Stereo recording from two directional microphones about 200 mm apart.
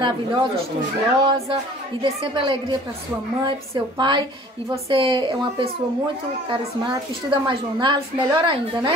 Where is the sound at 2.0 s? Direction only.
25° right (ahead or behind).